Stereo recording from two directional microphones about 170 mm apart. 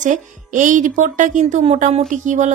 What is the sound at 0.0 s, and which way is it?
Speech, 50° right (ahead or behind).